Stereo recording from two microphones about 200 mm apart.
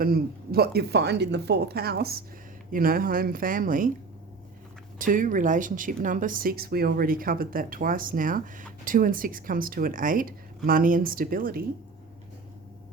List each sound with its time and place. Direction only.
0.0 s speech: 50° right (ahead or behind)
4.9 s speech: 40° right (ahead or behind)